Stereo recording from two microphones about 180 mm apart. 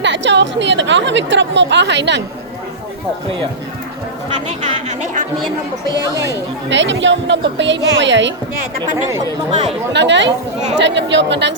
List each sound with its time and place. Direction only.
0.0 s a woman's voice: 80° right
4.4 s speech: 40° right (ahead or behind)
6.7 s a woman's voice: 90° right
9.9 s a woman's voice: 80° right